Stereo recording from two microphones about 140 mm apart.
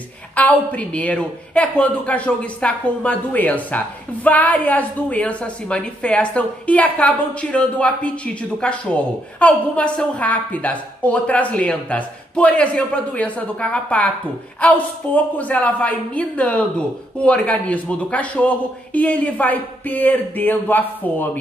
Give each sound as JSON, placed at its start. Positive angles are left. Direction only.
{"t": 0.4, "sound": "a woman's voice", "side_deg": 10}